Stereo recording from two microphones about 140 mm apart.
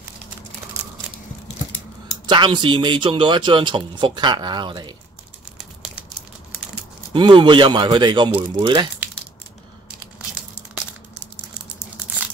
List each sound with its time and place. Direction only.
2.2 s a man's voice: 30° right (ahead or behind)
5.6 s crumpling: 5° right (ahead or behind)
7.1 s a man's voice: 35° right (ahead or behind)